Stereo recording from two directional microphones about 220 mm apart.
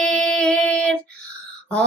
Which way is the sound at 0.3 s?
5° left (ahead or behind).